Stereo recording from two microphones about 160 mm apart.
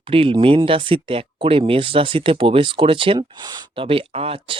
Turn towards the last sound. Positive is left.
turn(degrees=-35)  # may be behind; listen again after turning